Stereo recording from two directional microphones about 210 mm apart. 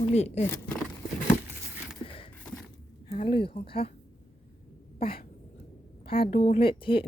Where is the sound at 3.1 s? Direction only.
25° left (ahead or behind).